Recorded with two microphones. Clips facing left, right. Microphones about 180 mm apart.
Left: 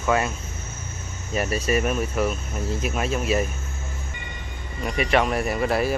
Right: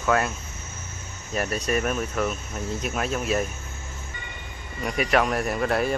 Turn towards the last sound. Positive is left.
turn(degrees=5)  # may be behind; listen again after turning